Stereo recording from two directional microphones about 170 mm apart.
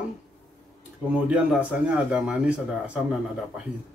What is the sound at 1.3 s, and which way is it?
A man's voice, 10° right (ahead or behind).